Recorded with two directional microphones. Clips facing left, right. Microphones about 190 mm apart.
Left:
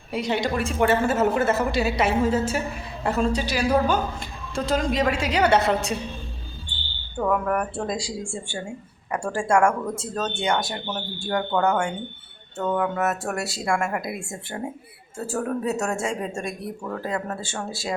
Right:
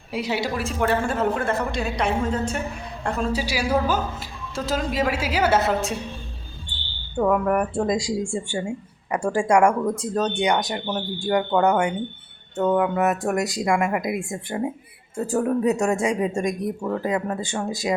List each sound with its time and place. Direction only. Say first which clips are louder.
0.1 s a woman's voice: left 1 dB; 5° right (ahead or behind)
7.2 s speech: right 3 dB; 10° right (ahead or behind)